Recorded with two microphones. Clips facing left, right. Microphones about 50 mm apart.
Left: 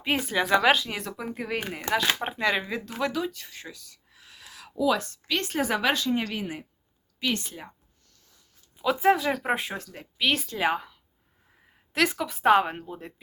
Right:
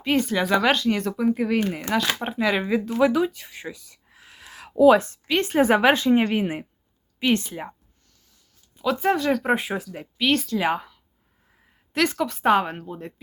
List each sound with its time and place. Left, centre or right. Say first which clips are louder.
0.0 s speech: right 4 dB; centre
3.0 s a sound: right 8 dB; centre; by 4.7 s right
4.8 s a woman's voice: right 10 dB; right
8.8 s speech: even; centre
11.9 s speech: right 3 dB; centre